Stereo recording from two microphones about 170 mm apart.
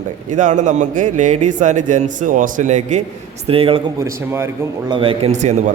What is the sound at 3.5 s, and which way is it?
Speech, 35° right (ahead or behind).